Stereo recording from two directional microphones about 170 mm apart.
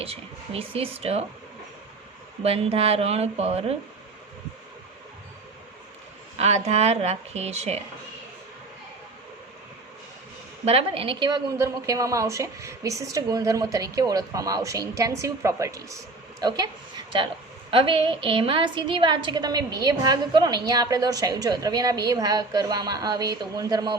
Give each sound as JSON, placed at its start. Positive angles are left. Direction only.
{"t": 0.0, "sound": "speech", "side_deg": -35}
{"t": 2.4, "sound": "a woman's voice", "side_deg": -35}
{"t": 6.3, "sound": "a woman's voice", "side_deg": -40}
{"t": 10.7, "sound": "a woman's voice", "side_deg": -35}